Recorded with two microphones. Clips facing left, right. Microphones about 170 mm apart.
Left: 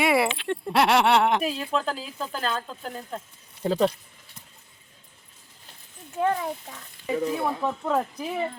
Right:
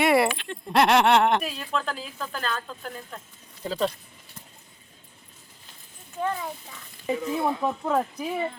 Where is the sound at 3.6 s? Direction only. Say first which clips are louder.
Left 4 dB; 45° left (ahead or behind).